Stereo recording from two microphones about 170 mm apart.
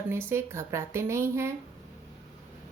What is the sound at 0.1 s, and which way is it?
Speech, 15° right (ahead or behind).